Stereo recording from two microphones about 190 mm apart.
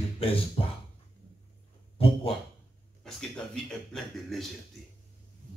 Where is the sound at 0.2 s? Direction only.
30° left (ahead or behind).